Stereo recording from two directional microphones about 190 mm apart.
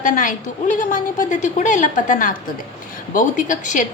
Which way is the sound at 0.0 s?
45° left (ahead or behind).